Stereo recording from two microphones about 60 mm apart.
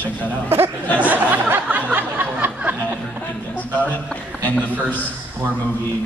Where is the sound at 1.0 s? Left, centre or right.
Right.